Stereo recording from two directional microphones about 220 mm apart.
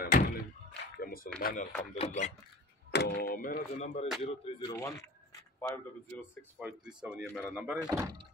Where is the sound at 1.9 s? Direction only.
35° left (ahead or behind).